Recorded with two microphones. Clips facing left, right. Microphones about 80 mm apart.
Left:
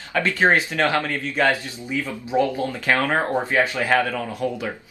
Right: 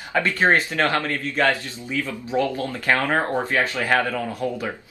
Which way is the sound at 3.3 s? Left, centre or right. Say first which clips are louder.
Left 1 dB; centre.